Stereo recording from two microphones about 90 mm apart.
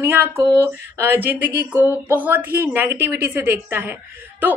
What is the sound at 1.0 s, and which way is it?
A woman's voice, 20° right (ahead or behind).